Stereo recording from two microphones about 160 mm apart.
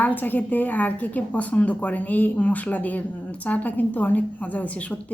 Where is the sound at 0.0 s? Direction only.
10° left (ahead or behind).